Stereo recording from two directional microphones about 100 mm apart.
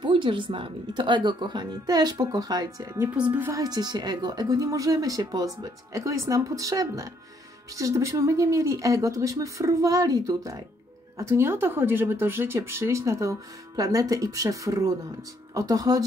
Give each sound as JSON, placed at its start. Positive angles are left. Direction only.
{"t": 0.0, "sound": "speech", "side_deg": -55}
{"t": 3.2, "sound": "a woman's voice", "side_deg": -15}
{"t": 3.5, "sound": "speech", "side_deg": -40}